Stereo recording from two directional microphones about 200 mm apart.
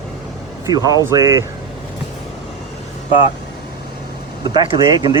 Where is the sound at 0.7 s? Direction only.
20° right (ahead or behind).